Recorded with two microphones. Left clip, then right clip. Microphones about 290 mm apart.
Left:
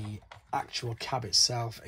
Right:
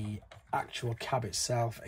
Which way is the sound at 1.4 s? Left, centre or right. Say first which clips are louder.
Left 3 dB; centre.